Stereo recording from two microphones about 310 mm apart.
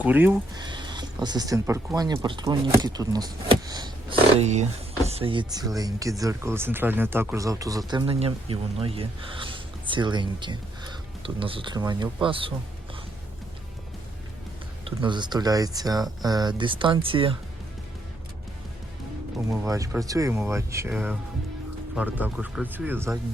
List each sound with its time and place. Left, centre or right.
0.0 s speech: centre
14.8 s speech: centre
19.6 s speech: centre